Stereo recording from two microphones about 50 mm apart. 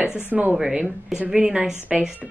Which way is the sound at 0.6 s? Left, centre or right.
Centre.